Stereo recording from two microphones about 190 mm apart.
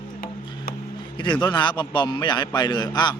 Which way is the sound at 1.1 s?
25° left (ahead or behind).